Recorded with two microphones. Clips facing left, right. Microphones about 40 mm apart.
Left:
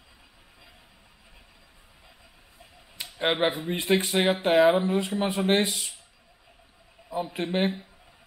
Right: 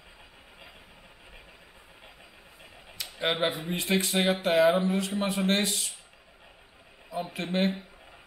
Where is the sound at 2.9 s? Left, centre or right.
Left.